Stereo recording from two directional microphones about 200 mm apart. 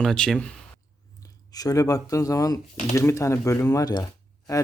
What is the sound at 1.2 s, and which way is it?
Speech, 20° left (ahead or behind).